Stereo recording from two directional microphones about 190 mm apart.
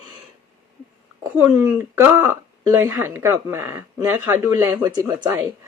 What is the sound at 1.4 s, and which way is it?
Speech, 10° right (ahead or behind).